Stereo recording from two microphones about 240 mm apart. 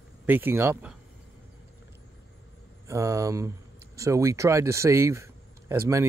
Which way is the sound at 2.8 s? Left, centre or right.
Centre.